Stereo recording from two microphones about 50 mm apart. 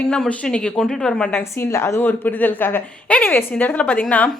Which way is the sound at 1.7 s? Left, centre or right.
Left.